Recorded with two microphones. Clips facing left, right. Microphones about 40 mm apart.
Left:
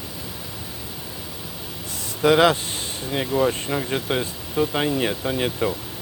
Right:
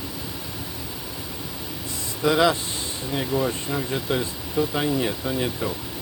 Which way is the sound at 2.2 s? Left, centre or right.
Left.